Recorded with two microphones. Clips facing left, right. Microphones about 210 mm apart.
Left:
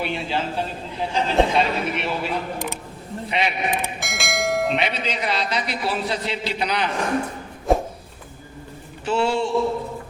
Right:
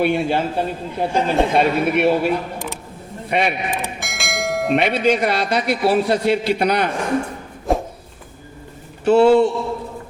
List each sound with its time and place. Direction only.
0.0 s a man's voice: 55° right (ahead or behind)
3.7 s bell: centre (ahead or behind)
4.7 s a man's voice: 55° right (ahead or behind)
7.7 s a sound: centre (ahead or behind)
9.0 s a man's voice: 60° right (ahead or behind)